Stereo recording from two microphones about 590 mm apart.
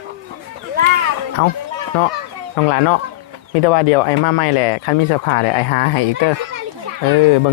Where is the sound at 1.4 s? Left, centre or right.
Left.